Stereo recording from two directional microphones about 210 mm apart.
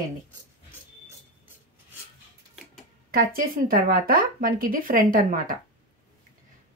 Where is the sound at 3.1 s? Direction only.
45° right (ahead or behind).